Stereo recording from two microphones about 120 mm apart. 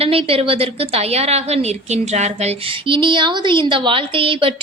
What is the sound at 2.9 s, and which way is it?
Speech, 45° right (ahead or behind).